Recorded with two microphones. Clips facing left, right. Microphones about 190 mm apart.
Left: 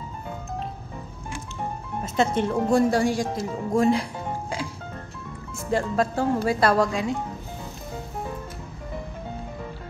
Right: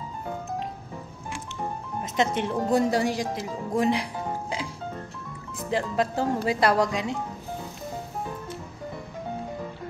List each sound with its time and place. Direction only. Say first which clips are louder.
2.1 s a woman's voice: left 3 dB; 15° right (ahead or behind)
5.7 s a woman's voice: left 2 dB; 15° right (ahead or behind)